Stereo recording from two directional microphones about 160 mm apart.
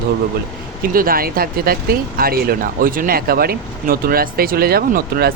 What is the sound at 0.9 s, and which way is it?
Speech, 65° right (ahead or behind).